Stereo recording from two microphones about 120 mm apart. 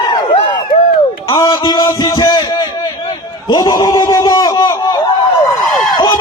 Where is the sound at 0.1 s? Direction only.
40° left (ahead or behind).